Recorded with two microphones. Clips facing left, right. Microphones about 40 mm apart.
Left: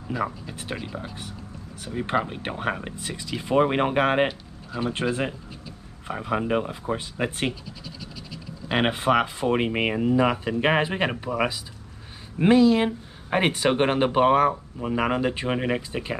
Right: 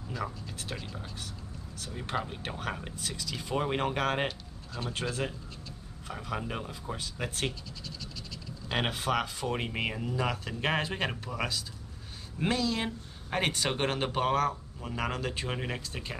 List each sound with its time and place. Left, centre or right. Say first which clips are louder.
0.1 s speech: left 9 dB; left
4.3 s a sound: left 7 dB; centre
5.0 s speech: left 8 dB; left